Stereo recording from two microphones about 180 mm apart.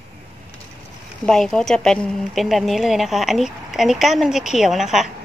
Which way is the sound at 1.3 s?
5° left (ahead or behind).